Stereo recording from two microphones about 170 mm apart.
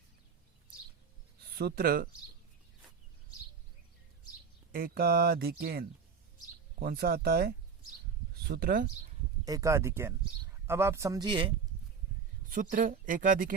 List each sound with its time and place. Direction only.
1.5 s speech: 70° right (ahead or behind)
4.7 s speech: 65° right (ahead or behind)
6.8 s speech: 65° right (ahead or behind)
9.5 s speech: 20° right (ahead or behind)
12.5 s speech: 55° right (ahead or behind)